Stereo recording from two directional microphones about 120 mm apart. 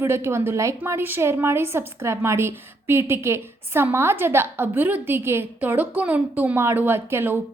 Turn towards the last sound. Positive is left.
turn(degrees=-20)  # may be behind; listen again after turning